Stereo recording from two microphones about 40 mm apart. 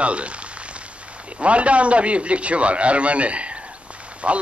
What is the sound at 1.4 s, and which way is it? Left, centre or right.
A man's voice, right.